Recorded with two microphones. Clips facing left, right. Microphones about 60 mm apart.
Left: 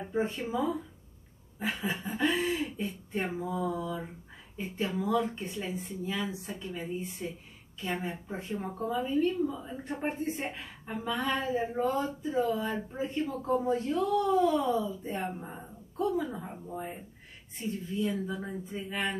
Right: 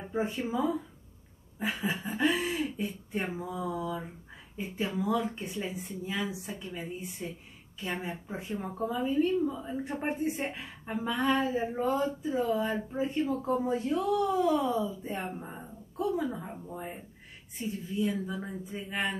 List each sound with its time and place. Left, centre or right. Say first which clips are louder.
0.0 s a woman's voice: even; centre
5.3 s a woman's voice: even; centre
18.9 s speech: right 1 dB; centre